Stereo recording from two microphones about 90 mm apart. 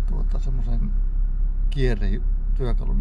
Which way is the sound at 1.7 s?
Centre (ahead or behind).